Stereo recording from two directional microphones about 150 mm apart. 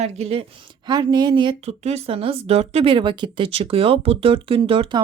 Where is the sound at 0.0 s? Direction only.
40° right (ahead or behind).